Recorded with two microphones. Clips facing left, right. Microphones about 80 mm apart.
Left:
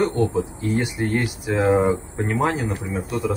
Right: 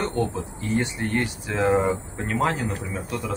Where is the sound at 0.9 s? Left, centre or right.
Centre.